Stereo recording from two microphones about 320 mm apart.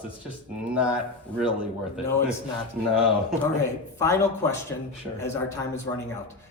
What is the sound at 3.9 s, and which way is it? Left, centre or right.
Speech, centre.